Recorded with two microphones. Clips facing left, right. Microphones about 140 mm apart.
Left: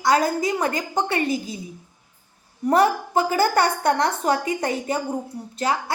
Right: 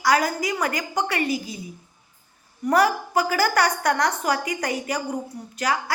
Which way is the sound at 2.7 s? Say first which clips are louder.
Left 2 dB; 25° left (ahead or behind).